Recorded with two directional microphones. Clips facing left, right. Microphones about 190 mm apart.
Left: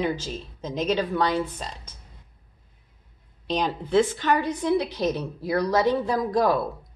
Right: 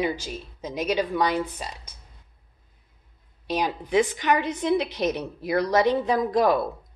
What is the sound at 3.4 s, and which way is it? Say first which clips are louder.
A woman's voice: even; 10° right (ahead or behind).